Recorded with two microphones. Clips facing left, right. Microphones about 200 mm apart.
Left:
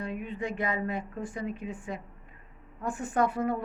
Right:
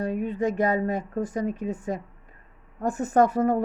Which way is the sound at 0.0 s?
40° right (ahead or behind).